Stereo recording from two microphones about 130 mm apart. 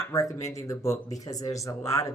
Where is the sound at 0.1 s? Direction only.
25° left (ahead or behind).